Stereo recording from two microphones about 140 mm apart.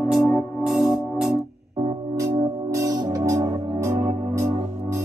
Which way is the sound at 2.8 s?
25° right (ahead or behind).